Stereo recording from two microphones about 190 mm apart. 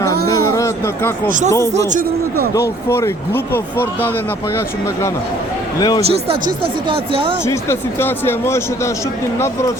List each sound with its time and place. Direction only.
0.3 s a sound: 20° left (ahead or behind)
1.5 s speech: 15° left (ahead or behind)
1.9 s a man's voice: 45° right (ahead or behind)
2.5 s speech: 15° left (ahead or behind)
6.1 s speech: 30° right (ahead or behind)
7.4 s speech: 15° left (ahead or behind)